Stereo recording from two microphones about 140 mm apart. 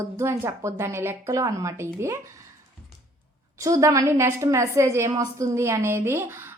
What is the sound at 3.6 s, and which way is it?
A woman's voice, 20° right (ahead or behind).